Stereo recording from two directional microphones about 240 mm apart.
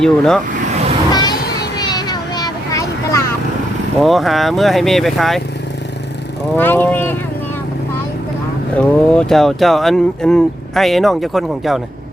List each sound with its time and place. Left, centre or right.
0.0 s speech: centre
1.1 s children playing: centre
1.8 s vehicle: centre
4.0 s speech: centre
6.6 s speech: centre
8.7 s speech: centre